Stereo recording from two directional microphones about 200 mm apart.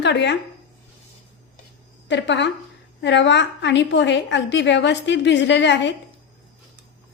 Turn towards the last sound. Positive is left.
turn(degrees=60)  # may be behind; listen again after turning